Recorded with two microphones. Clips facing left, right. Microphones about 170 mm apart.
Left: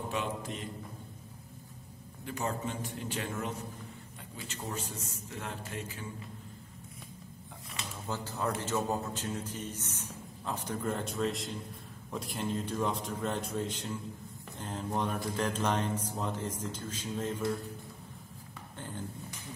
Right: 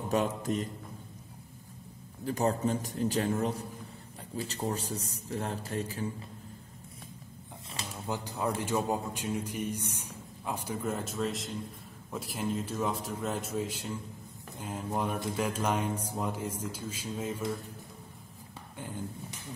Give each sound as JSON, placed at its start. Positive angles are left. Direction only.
{"t": 0.1, "sound": "a man's voice", "side_deg": -45}
{"t": 2.2, "sound": "a man's voice", "side_deg": -35}
{"t": 7.8, "sound": "a sound", "side_deg": -35}
{"t": 8.1, "sound": "a man's voice", "side_deg": -15}